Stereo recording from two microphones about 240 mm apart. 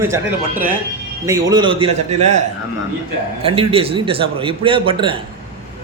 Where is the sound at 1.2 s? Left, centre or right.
Centre.